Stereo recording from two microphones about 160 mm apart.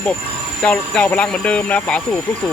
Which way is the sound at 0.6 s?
5° left (ahead or behind).